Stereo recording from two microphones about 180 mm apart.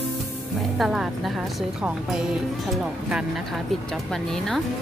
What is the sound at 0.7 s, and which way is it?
Speech, centre (ahead or behind).